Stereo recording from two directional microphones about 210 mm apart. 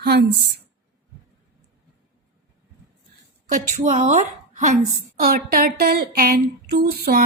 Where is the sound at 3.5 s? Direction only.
35° right (ahead or behind).